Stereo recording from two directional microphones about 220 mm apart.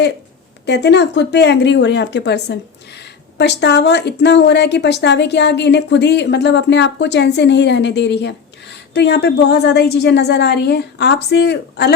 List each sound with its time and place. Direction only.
0.6 s speech: 50° left (ahead or behind)